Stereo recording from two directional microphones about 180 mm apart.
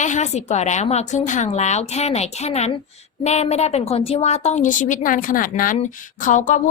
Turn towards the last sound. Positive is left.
turn(degrees=45)  # may be behind; listen again after turning